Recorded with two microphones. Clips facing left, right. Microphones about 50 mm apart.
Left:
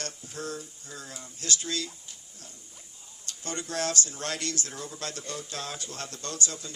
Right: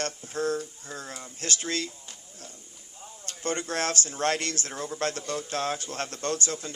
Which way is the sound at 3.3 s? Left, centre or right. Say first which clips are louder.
Right 5 dB; right.